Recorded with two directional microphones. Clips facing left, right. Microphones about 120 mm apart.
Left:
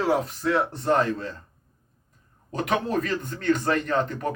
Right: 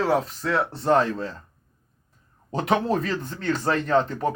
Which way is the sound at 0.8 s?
35° right (ahead or behind).